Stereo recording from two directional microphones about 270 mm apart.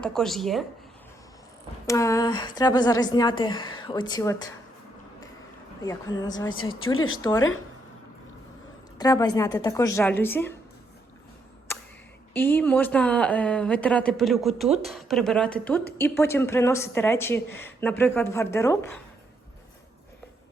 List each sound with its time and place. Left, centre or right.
0.0 s speech: centre
1.9 s speech: centre
5.8 s speech: centre
9.0 s speech: centre
12.3 s speech: centre